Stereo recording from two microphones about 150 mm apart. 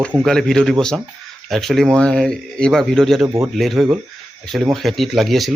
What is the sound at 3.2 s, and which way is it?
Speech, 20° right (ahead or behind).